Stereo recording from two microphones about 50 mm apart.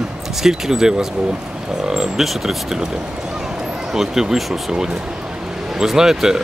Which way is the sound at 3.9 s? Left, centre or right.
Centre.